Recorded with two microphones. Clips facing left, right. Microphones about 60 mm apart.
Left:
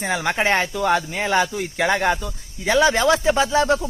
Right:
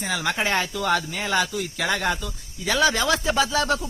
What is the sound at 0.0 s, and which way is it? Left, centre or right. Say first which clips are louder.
Speech: left 4 dB; left.